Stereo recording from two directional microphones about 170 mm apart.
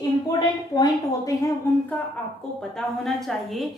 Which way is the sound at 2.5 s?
5° left (ahead or behind).